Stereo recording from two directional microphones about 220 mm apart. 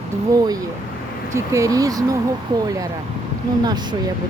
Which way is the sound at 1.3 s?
15° right (ahead or behind).